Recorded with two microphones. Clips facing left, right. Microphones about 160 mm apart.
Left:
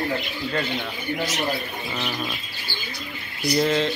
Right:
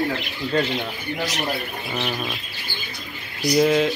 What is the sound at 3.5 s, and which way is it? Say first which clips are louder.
Speech: right 4 dB; 10° right (ahead or behind).